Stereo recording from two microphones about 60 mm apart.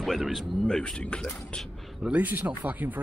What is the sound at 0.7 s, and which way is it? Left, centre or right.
Speech, centre.